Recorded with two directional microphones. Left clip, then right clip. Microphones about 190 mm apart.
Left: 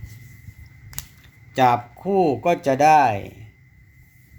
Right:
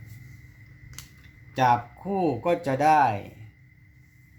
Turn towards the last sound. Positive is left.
turn(degrees=40)  # may be behind; listen again after turning